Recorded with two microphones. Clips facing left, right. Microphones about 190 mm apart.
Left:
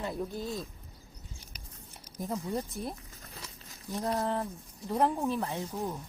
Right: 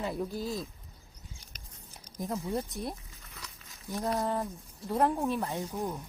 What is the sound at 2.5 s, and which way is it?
Speech, centre (ahead or behind).